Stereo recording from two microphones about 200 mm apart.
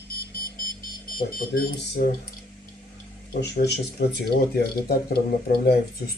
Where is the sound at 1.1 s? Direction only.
45° left (ahead or behind).